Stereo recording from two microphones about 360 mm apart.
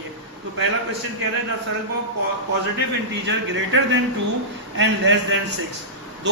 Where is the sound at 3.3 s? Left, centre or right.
Right.